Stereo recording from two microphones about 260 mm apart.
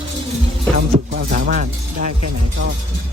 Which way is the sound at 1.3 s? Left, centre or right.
Right.